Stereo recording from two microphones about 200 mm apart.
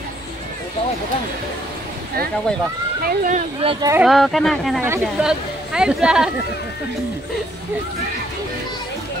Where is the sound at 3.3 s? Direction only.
35° right (ahead or behind).